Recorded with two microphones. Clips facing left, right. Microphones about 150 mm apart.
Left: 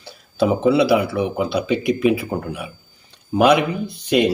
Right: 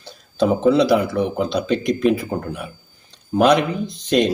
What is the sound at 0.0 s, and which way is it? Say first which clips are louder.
Speech: even; 10° left (ahead or behind).